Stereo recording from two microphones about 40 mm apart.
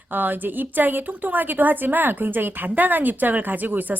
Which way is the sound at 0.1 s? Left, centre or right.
Right.